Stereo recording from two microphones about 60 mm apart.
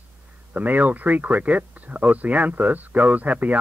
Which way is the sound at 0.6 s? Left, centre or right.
Right.